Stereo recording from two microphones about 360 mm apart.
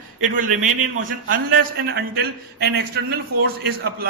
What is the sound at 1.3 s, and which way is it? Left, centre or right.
A man's voice, right.